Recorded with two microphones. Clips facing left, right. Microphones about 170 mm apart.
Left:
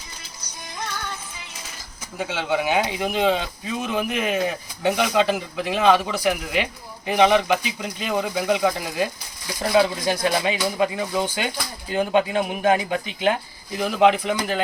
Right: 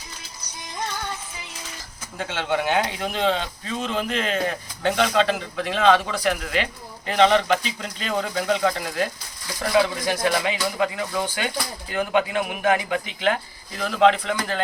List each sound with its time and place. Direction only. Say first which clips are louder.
2.1 s a man's voice: left 1 dB; 5° left (ahead or behind)
9.6 s a man's voice: left 1 dB; 20° left (ahead or behind)